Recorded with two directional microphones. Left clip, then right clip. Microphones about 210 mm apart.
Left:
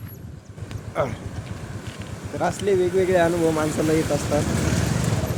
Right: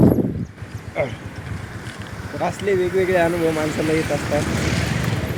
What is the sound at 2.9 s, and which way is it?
Speech, 10° left (ahead or behind).